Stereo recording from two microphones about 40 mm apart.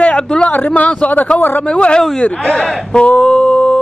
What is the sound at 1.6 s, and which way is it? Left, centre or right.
Speech, left.